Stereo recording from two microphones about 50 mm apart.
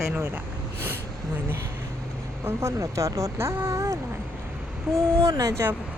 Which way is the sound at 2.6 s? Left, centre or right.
Right.